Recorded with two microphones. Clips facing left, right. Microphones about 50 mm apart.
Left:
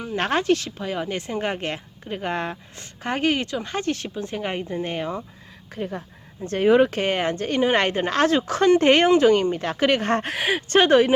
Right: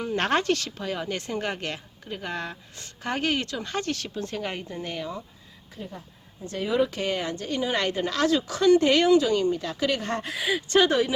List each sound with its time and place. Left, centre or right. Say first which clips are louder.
0.0 s speech: left 1 dB; centre; by 5.2 s left
5.7 s a woman's voice: left 9 dB; left